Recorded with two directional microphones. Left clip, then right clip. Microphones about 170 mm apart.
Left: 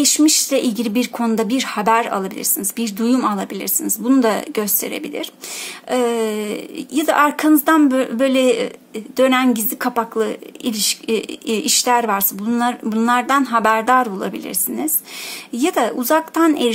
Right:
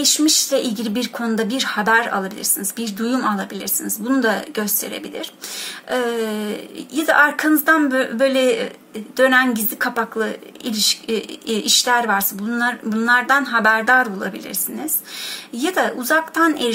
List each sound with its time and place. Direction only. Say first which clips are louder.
0.0 s speech: left 1 dB; 40° left (ahead or behind)
15.5 s speech: left 2 dB; 40° left (ahead or behind)